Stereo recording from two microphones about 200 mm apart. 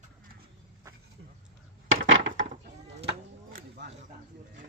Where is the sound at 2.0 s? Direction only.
75° right (ahead or behind).